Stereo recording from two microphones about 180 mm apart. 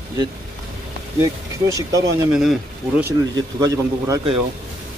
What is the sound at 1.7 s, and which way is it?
Speech, 20° right (ahead or behind).